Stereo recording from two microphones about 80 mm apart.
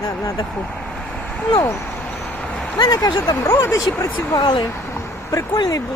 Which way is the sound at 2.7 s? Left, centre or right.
Left.